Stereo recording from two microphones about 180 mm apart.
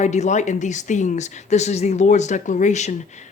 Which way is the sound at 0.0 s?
40° left (ahead or behind).